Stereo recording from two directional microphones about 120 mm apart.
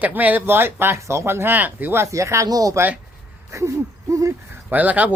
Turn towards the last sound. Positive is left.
turn(degrees=-15)  # may be behind; listen again after turning